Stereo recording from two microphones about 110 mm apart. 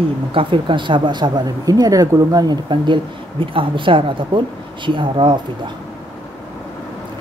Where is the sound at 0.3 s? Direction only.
50° right (ahead or behind).